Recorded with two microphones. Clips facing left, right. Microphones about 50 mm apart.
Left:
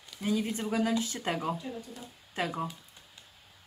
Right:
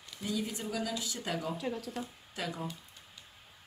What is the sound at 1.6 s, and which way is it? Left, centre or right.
Speech, right.